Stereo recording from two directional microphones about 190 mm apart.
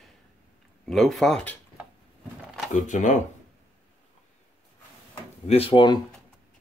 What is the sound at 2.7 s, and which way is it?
Speech, 40° left (ahead or behind).